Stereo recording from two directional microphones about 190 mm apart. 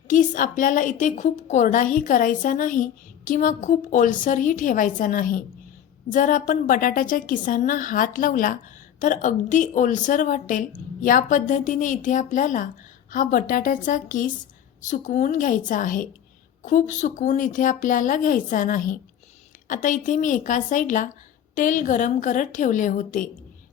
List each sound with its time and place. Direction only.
0.1 s a woman's voice: 45° left (ahead or behind)